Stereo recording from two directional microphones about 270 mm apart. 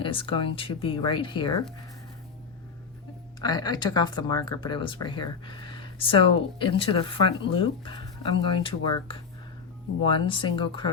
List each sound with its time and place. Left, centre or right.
0.0 s speech: centre
3.4 s speech: centre